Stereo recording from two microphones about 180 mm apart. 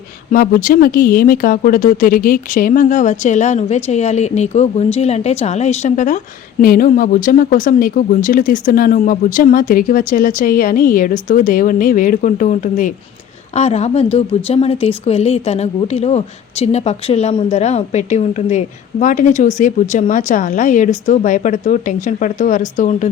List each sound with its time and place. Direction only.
0.3 s a woman's voice: 50° left (ahead or behind)